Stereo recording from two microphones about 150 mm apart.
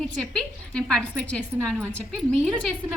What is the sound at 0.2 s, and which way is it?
A woman's voice, 5° left (ahead or behind).